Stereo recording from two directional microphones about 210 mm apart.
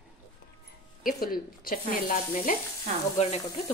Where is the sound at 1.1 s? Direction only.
45° left (ahead or behind).